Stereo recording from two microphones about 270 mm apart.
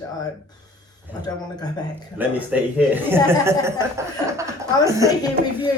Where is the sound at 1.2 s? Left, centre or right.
Centre.